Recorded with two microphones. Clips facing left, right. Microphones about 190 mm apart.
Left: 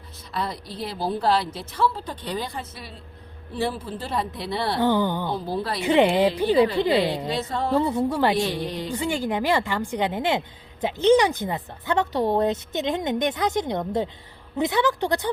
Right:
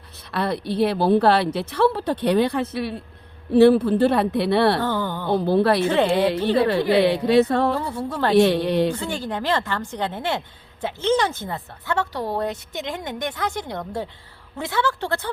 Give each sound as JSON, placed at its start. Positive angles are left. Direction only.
{"t": 0.3, "sound": "a woman's voice", "side_deg": -65}
{"t": 4.8, "sound": "speech", "side_deg": 15}
{"t": 5.3, "sound": "a woman's voice", "side_deg": -65}
{"t": 5.8, "sound": "speech", "side_deg": 15}
{"t": 7.0, "sound": "a woman's voice", "side_deg": -65}
{"t": 7.8, "sound": "speech", "side_deg": 20}
{"t": 8.4, "sound": "a woman's voice", "side_deg": -65}
{"t": 8.9, "sound": "speech", "side_deg": 15}